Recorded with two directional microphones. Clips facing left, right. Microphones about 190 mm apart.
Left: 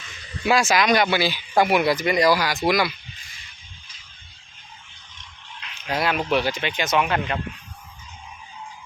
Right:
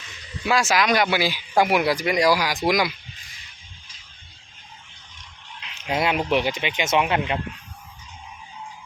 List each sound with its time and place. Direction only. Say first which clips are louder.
0.4 s speech: left 2 dB; centre (ahead or behind)
5.8 s speech: right 1 dB; 20° right (ahead or behind)